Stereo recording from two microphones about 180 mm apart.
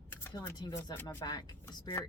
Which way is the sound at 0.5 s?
25° left (ahead or behind).